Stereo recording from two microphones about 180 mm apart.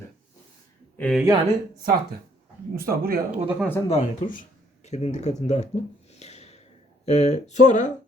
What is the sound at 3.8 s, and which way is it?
Speech, 45° left (ahead or behind).